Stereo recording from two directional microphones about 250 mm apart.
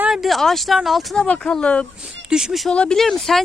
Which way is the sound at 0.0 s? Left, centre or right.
Centre.